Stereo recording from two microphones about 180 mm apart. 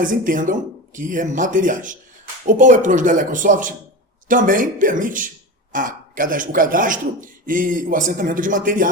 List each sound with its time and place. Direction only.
0.0 s speech: 50° right (ahead or behind)